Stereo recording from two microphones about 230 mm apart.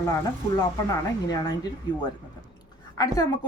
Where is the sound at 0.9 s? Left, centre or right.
Centre.